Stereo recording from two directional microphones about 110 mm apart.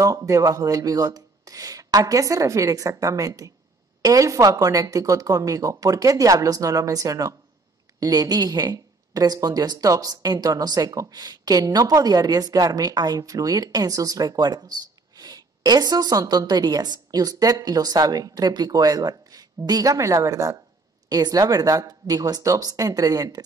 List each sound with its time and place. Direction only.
0.0 s speech: 30° right (ahead or behind)